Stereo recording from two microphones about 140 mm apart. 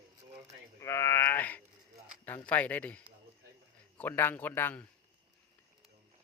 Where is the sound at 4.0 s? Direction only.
15° left (ahead or behind).